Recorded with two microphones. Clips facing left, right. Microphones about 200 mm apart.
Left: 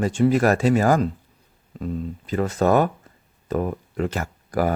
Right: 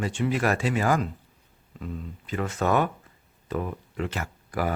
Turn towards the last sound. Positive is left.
turn(degrees=40)  # may be behind; listen again after turning